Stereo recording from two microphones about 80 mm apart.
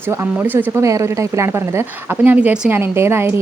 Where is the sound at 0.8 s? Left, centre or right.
Right.